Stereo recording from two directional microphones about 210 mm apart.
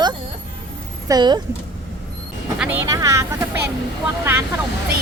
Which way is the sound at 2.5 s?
10° right (ahead or behind).